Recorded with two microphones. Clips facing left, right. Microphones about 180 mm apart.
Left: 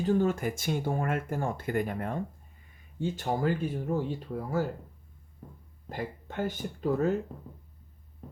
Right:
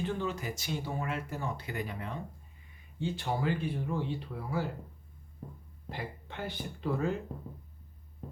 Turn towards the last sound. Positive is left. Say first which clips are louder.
# left 5 dB
turn(degrees=45)  # may be behind; listen again after turning